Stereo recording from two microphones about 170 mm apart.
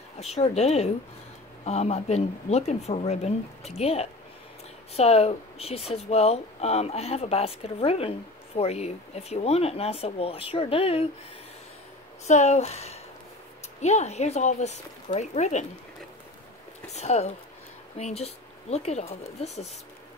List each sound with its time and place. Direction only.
0.2 s speech: 40° left (ahead or behind)
12.3 s speech: 40° left (ahead or behind)
16.9 s speech: 40° left (ahead or behind)